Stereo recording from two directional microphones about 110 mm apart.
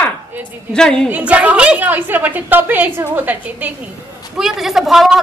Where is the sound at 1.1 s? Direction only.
15° right (ahead or behind).